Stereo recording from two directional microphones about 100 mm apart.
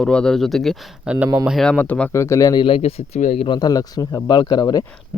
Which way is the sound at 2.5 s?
60° left (ahead or behind).